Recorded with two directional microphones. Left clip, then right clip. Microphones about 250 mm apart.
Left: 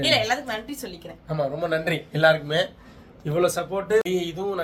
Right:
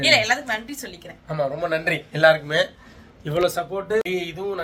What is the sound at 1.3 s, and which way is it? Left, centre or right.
Speech, centre.